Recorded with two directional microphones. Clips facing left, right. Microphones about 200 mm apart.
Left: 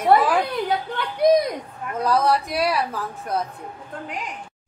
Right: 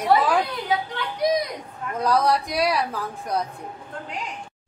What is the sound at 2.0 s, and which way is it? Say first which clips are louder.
Speech: left 1 dB; 5° left (ahead or behind).